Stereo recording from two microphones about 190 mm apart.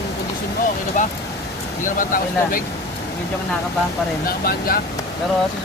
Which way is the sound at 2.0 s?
45° left (ahead or behind).